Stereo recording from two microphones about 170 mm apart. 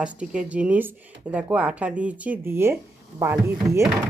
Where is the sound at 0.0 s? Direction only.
5° right (ahead or behind).